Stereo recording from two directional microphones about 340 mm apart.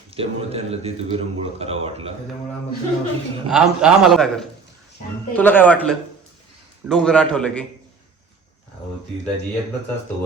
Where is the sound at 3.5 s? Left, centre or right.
Centre.